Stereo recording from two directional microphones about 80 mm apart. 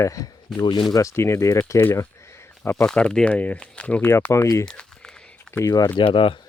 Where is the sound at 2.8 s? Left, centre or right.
Centre.